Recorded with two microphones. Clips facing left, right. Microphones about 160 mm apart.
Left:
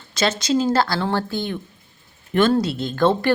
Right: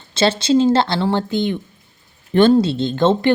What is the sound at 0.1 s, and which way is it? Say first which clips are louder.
A woman's voice: right 5 dB; 30° right (ahead or behind).